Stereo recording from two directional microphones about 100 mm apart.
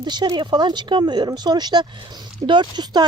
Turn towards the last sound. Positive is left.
turn(degrees=-50)  # may be behind; listen again after turning